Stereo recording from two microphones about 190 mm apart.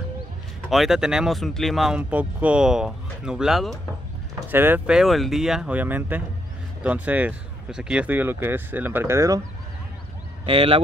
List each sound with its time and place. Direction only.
0.7 s speech: centre (ahead or behind)
10.4 s speech: 30° right (ahead or behind)